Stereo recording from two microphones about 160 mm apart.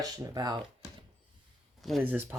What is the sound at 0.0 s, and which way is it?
Speech, 25° right (ahead or behind).